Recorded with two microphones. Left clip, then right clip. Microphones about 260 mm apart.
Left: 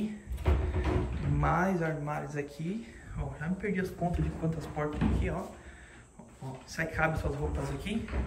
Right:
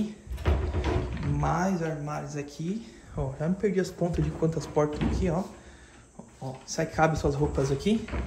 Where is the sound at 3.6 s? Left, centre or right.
Centre.